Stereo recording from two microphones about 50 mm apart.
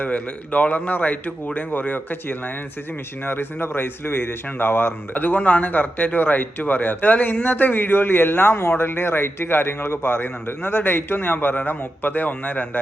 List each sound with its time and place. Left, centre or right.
0.0 s a man's voice: left
3.2 s a man's voice: left
5.1 s a man's voice: left